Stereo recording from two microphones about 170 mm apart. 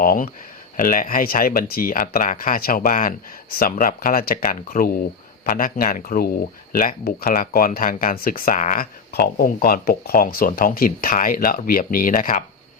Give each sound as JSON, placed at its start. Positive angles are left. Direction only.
{"t": 0.0, "sound": "speech", "side_deg": 55}